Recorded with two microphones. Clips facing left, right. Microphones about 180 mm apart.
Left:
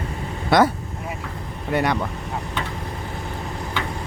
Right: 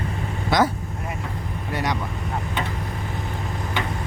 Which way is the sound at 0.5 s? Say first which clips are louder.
Left 3 dB; 60° left (ahead or behind).